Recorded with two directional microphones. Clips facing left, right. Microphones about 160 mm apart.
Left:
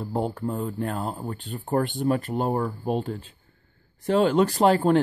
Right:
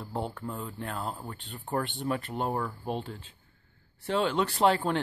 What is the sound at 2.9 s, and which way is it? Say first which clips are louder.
Speech: left 7 dB; 45° left (ahead or behind).